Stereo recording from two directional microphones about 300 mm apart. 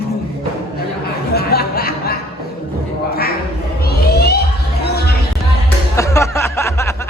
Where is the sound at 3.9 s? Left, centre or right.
Left.